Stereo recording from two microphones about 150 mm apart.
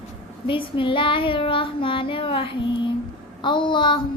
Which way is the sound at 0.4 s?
35° left (ahead or behind).